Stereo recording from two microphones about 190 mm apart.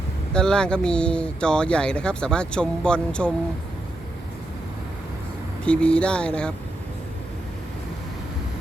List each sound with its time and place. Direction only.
0.3 s speech: 5° left (ahead or behind)
5.6 s speech: 5° left (ahead or behind)